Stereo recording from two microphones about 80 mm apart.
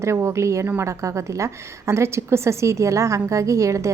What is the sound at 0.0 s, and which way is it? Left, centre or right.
A woman's voice, right.